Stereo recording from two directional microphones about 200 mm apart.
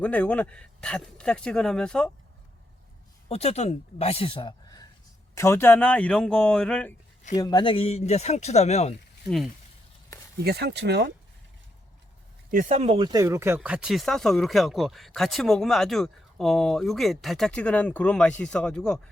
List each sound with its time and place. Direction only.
0.0 s speech: 5° left (ahead or behind)
3.2 s speech: 30° left (ahead or behind); by 6.9 s 5° left (ahead or behind)
7.3 s speech: 20° left (ahead or behind)
10.4 s speech: 55° right (ahead or behind)
12.5 s speech: 40° right (ahead or behind); by 18.9 s 5° left (ahead or behind)